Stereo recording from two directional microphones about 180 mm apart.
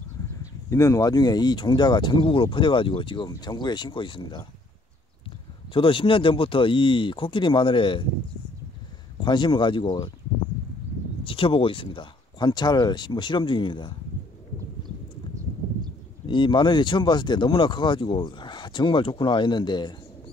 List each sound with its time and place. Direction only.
0.4 s speech: 15° left (ahead or behind)
5.7 s speech: 30° left (ahead or behind)
9.2 s speech: 25° left (ahead or behind)
11.2 s speech: 30° left (ahead or behind)
16.3 s speech: 25° left (ahead or behind)